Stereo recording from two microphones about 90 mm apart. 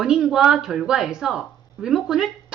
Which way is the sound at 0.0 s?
5° right (ahead or behind).